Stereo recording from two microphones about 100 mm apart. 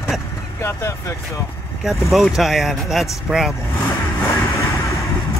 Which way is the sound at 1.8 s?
Centre (ahead or behind).